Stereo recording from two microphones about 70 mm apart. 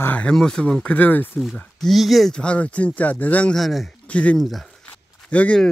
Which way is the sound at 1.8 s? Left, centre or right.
Centre.